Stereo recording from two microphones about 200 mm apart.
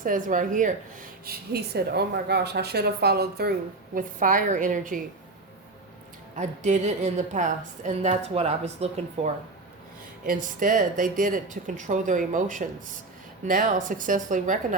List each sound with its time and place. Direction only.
0.0 s a woman's voice: 40° right (ahead or behind)
1.2 s a woman's voice: 50° right (ahead or behind)
3.9 s a woman's voice: 40° right (ahead or behind)
6.3 s a woman's voice: 35° right (ahead or behind)